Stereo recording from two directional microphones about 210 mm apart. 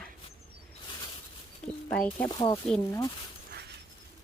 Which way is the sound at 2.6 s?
5° left (ahead or behind).